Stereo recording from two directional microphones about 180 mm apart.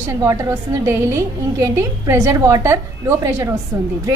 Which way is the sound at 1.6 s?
15° right (ahead or behind).